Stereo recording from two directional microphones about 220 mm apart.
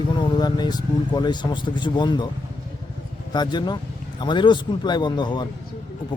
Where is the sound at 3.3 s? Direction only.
20° left (ahead or behind).